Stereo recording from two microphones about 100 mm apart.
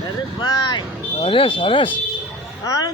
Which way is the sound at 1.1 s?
65° left (ahead or behind).